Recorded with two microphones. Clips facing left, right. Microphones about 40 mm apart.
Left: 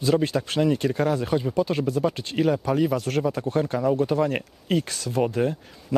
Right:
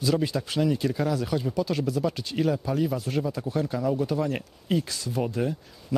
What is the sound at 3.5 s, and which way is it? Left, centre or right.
Speech, left.